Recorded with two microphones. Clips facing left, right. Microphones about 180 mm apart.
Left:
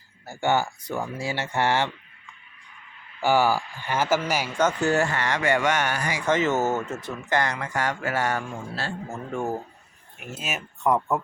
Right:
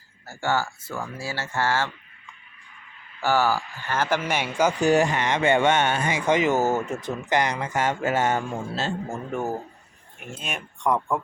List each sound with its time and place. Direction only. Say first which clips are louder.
0.3 s speech: left 2 dB; 20° left (ahead or behind)
3.2 s speech: left 1 dB; 15° left (ahead or behind)
4.6 s speech: right 3 dB; 15° right (ahead or behind)
10.2 s speech: left 1 dB; 5° left (ahead or behind)